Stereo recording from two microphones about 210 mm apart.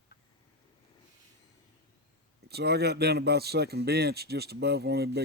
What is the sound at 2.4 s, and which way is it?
A man's voice, 50° right (ahead or behind).